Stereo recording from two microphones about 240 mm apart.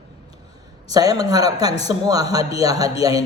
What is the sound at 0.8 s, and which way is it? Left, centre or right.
Speech, centre.